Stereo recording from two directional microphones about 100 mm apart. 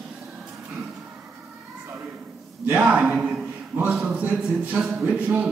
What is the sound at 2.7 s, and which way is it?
A man's voice, 10° right (ahead or behind).